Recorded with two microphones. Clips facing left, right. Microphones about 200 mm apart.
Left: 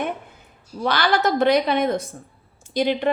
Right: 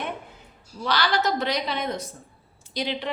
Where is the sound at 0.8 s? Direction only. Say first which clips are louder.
Left 4 dB; 55° left (ahead or behind).